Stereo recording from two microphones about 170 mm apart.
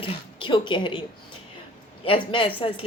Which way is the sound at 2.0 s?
30° left (ahead or behind).